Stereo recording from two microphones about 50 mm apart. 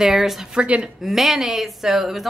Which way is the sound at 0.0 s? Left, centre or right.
Centre.